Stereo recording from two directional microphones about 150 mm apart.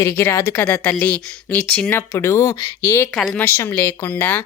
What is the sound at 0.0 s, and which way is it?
Speech, 15° left (ahead or behind).